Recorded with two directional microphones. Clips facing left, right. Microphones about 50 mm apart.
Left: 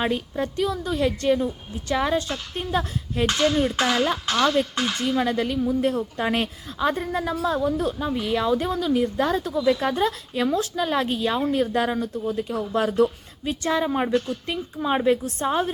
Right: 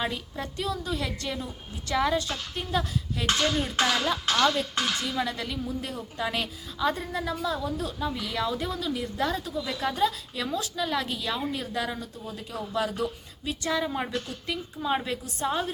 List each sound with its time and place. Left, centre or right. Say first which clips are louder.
0.0 s a woman's voice: left 7 dB; left
3.5 s speech: left 4 dB; centre
3.9 s a woman's voice: left 3 dB; left